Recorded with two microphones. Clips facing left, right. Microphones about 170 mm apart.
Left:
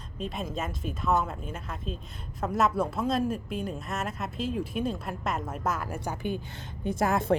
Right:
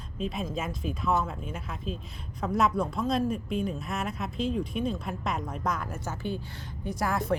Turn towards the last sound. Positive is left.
turn(degrees=25)  # may be behind; listen again after turning